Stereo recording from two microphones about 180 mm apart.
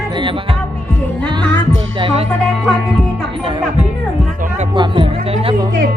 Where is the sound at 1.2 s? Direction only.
25° right (ahead or behind).